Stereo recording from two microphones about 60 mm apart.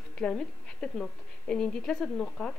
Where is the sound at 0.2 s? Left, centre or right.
Centre.